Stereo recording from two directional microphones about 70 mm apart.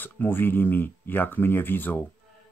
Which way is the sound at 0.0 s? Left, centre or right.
Left.